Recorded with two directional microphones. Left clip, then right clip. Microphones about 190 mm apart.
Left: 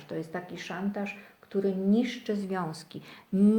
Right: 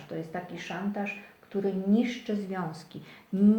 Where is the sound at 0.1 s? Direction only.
50° left (ahead or behind).